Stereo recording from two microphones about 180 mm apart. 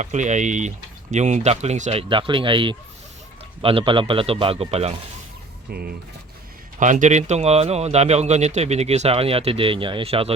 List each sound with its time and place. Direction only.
0.0 s speech: 40° right (ahead or behind)
5.7 s speech: 60° right (ahead or behind)
6.7 s speech: 45° right (ahead or behind)